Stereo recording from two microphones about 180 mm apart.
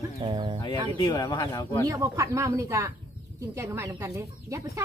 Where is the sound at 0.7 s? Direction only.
20° left (ahead or behind).